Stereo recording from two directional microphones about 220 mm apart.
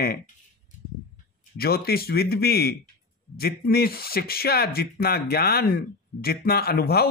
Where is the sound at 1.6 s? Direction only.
45° left (ahead or behind).